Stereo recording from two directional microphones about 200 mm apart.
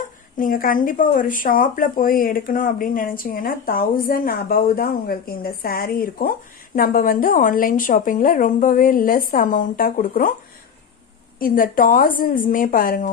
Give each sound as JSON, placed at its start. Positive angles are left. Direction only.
{"t": 0.4, "sound": "a woman's voice", "side_deg": 45}
{"t": 11.3, "sound": "a woman's voice", "side_deg": 45}